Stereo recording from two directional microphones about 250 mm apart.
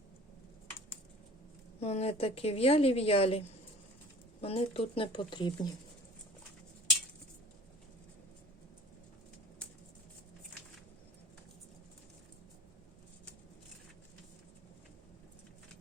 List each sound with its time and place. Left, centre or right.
1.8 s a woman's voice: left